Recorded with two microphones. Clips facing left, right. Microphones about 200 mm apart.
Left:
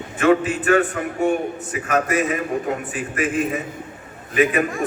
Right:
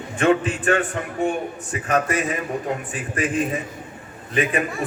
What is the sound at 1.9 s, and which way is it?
A man's voice, 30° right (ahead or behind).